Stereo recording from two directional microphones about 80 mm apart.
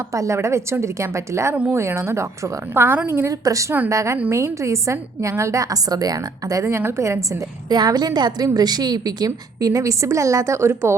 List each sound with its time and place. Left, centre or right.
0.1 s a woman's voice: right
3.2 s a woman's voice: right
7.7 s a woman's voice: right